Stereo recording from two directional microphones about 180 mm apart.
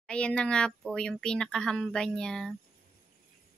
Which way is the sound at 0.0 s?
5° left (ahead or behind).